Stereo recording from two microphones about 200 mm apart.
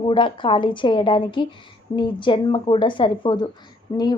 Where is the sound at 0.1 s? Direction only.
25° left (ahead or behind).